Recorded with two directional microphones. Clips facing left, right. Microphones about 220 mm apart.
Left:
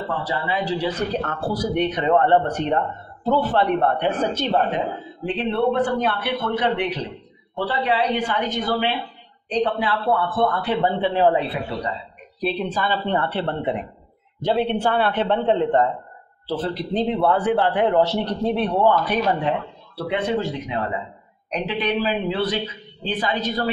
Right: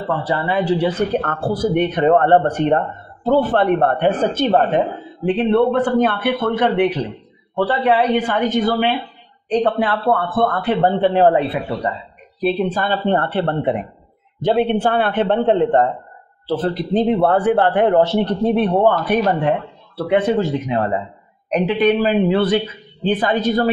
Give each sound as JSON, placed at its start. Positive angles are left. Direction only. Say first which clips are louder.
{"t": 0.2, "sound": "a man's voice", "louder": "right 5 dB", "side_deg": -55}
{"t": 20.6, "sound": "a man's voice", "louder": "right 6 dB", "side_deg": -50}